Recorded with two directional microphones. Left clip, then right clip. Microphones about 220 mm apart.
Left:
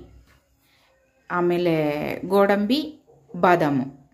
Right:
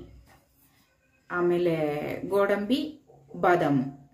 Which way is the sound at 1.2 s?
35° left (ahead or behind).